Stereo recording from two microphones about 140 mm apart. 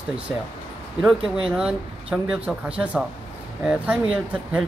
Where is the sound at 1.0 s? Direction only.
5° right (ahead or behind).